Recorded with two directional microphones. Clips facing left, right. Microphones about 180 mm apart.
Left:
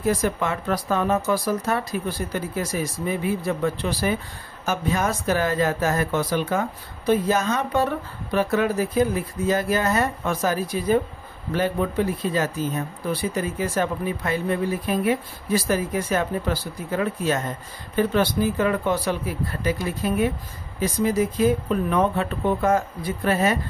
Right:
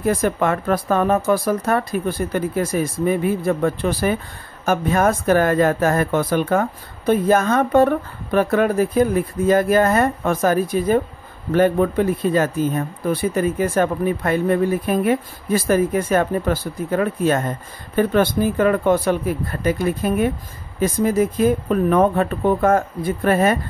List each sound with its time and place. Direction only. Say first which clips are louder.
0.0 s speech: right 4 dB; 55° right (ahead or behind)